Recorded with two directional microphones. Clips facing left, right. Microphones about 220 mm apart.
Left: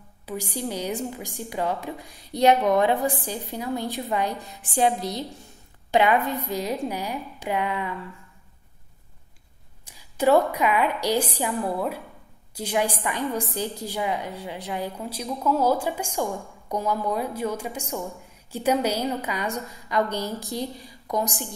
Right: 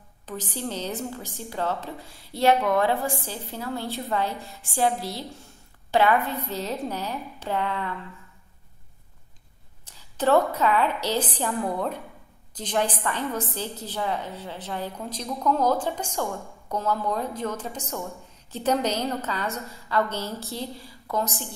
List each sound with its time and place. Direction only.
0.3 s a woman's voice: 10° left (ahead or behind)
9.8 s a woman's voice: 10° left (ahead or behind)